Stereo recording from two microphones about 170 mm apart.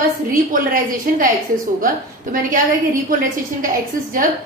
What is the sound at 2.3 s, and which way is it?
Speech, 55° right (ahead or behind).